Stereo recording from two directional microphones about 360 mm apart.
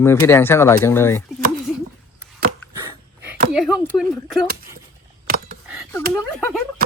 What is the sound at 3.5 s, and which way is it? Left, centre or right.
Speech, centre.